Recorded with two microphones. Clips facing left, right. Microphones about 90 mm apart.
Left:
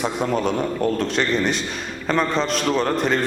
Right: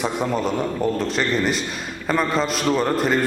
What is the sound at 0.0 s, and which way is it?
A man's voice, centre (ahead or behind).